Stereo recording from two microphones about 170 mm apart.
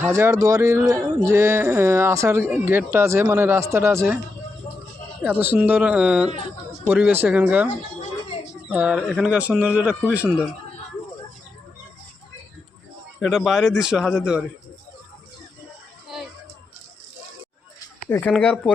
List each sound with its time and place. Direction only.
0.1 s speech: 15° right (ahead or behind)
5.2 s speech: 10° right (ahead or behind)
8.7 s speech: 5° right (ahead or behind)
9.9 s speech: 10° left (ahead or behind)
10.2 s a man's voice: 5° right (ahead or behind)
13.1 s a man's voice: centre (ahead or behind)
18.1 s a man's voice: 10° left (ahead or behind)